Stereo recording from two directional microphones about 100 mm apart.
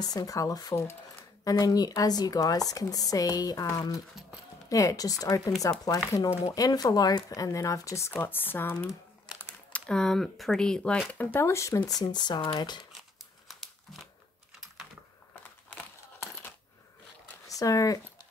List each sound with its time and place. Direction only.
0.1 s speech: 35° left (ahead or behind)
4.6 s speech: 35° left (ahead or behind)
8.2 s speech: 20° left (ahead or behind)
9.7 s speech: 10° left (ahead or behind)
11.1 s speech: 20° left (ahead or behind)
12.0 s speech: 45° left (ahead or behind)
13.5 s crumpling: centre (ahead or behind)
17.5 s speech: 35° left (ahead or behind)